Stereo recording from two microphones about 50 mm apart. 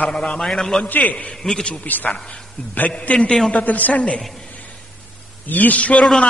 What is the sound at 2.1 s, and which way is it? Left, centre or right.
A man's voice, centre.